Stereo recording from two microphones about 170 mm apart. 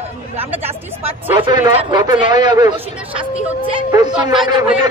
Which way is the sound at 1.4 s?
30° right (ahead or behind).